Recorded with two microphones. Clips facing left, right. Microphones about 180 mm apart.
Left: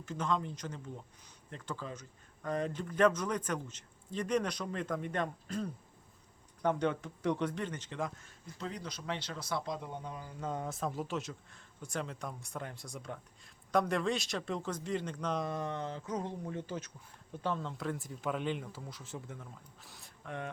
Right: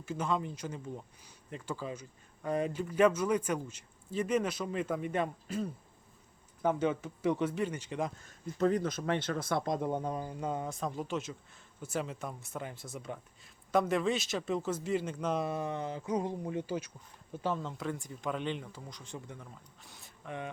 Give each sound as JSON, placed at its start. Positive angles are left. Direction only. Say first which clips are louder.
{"t": 0.0, "sound": "speech", "louder": "right 1 dB", "side_deg": -10}
{"t": 8.5, "sound": "speech", "louder": "right 13 dB", "side_deg": -50}
{"t": 10.4, "sound": "speech", "louder": "left 1 dB", "side_deg": -5}